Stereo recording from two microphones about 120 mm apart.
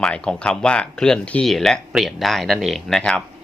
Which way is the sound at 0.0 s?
10° left (ahead or behind).